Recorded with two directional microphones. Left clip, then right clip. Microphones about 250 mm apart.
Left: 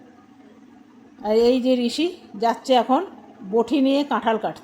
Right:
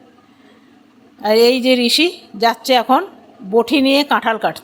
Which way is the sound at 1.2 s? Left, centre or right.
Centre.